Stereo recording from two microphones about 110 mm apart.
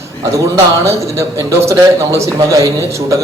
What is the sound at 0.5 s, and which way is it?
A man's voice, 25° right (ahead or behind).